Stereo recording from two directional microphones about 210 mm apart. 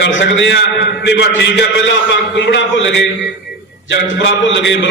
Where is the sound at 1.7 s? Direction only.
60° left (ahead or behind).